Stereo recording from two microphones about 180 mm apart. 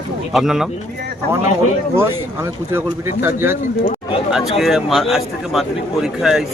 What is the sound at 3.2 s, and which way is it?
Speech, 10° right (ahead or behind).